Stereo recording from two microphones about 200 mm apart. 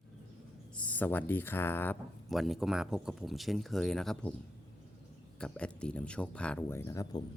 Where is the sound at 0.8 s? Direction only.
5° left (ahead or behind).